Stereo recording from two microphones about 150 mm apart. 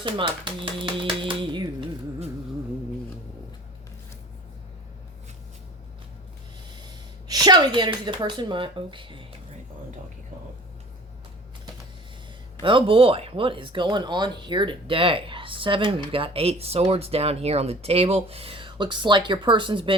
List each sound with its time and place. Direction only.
0.0 s speech: 35° right (ahead or behind)
6.8 s speech: 25° right (ahead or behind)
12.6 s speech: 35° right (ahead or behind)